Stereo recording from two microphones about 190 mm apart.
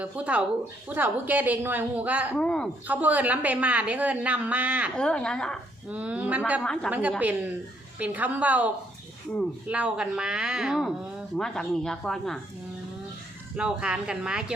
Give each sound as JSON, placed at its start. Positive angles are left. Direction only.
{"t": 0.0, "sound": "a woman's voice", "side_deg": -5}
{"t": 2.3, "sound": "speech", "side_deg": 5}
{"t": 2.8, "sound": "a woman's voice", "side_deg": -10}
{"t": 4.9, "sound": "speech", "side_deg": 5}
{"t": 5.9, "sound": "a woman's voice", "side_deg": -5}
{"t": 6.6, "sound": "speech", "side_deg": 5}
{"t": 7.2, "sound": "a woman's voice", "side_deg": -10}
{"t": 13.6, "sound": "speech", "side_deg": -5}